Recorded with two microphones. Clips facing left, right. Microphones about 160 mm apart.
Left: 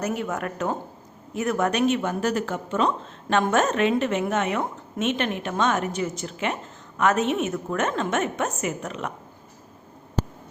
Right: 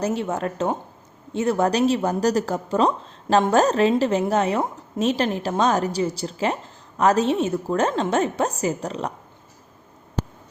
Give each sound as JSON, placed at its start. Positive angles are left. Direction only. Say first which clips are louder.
{"t": 0.0, "sound": "speech", "louder": "right 3 dB", "side_deg": -30}